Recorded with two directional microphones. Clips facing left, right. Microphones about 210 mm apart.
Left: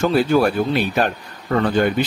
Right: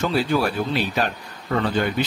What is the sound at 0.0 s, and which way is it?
Speech, 45° left (ahead or behind).